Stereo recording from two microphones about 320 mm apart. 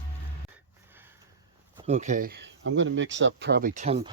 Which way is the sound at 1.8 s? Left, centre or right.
Right.